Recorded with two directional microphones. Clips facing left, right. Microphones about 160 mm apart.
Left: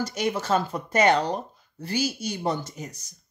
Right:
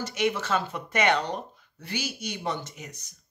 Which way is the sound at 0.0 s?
40° left (ahead or behind).